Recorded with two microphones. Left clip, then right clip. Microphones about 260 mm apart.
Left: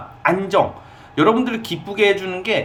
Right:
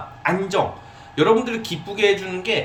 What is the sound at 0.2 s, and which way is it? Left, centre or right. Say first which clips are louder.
Speech: left 4 dB; centre.